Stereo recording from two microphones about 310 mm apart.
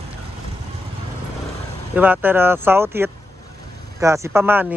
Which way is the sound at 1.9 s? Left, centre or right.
Centre.